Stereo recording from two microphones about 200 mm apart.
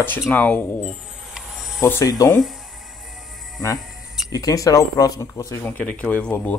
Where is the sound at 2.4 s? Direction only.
Centre (ahead or behind).